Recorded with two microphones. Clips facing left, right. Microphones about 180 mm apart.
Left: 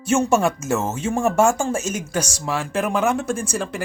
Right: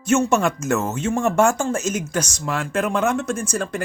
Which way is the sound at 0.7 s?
25° left (ahead or behind).